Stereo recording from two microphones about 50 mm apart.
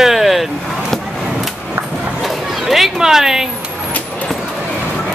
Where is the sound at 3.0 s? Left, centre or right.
Centre.